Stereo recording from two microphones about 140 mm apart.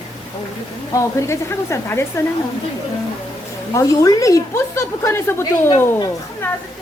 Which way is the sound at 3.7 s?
25° left (ahead or behind).